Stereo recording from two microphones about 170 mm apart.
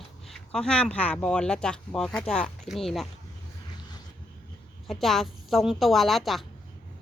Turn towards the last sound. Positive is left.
turn(degrees=0)  # may be behind; listen again after turning